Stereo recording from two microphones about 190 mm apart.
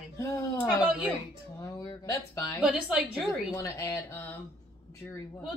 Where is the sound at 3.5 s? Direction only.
15° left (ahead or behind).